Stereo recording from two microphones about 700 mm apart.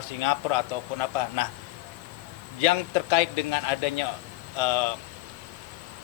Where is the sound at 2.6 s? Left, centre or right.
Left.